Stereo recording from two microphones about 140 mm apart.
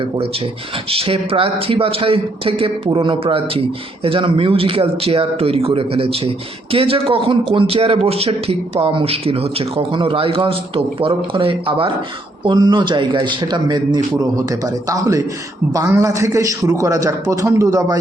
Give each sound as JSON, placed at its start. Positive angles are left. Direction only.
{"t": 0.9, "sound": "speech", "side_deg": -40}